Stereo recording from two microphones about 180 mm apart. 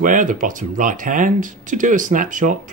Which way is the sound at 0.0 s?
45° right (ahead or behind).